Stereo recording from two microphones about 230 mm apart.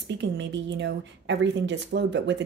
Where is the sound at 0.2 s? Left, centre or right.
Right.